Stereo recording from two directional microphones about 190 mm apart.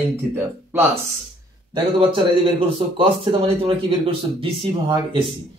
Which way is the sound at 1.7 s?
25° right (ahead or behind).